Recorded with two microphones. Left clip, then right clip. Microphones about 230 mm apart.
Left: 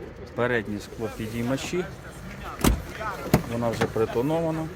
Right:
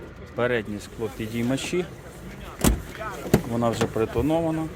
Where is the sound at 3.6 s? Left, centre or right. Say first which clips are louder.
Right 1 dB; right.